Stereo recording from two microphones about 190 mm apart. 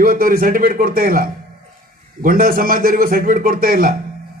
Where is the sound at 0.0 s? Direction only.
50° right (ahead or behind).